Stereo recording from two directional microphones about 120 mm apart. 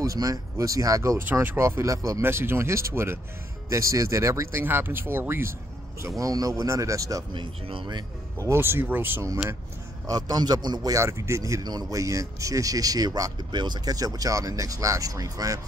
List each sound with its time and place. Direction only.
0.0 s speech: 30° right (ahead or behind)
7.3 s speech: 45° right (ahead or behind)
8.4 s speech: 20° right (ahead or behind)
10.0 s a man's voice: 35° right (ahead or behind)